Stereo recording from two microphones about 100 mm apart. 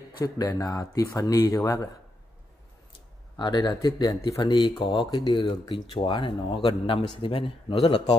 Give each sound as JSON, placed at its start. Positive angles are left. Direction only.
{"t": 0.2, "sound": "speech", "side_deg": 35}
{"t": 3.3, "sound": "speech", "side_deg": 45}
{"t": 3.6, "sound": "speech", "side_deg": 35}
{"t": 5.4, "sound": "a man's voice", "side_deg": 55}